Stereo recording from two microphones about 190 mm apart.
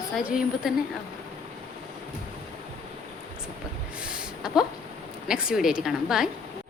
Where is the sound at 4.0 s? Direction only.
5° right (ahead or behind).